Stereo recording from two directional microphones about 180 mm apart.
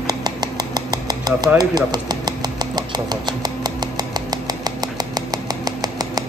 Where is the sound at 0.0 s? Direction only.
20° right (ahead or behind).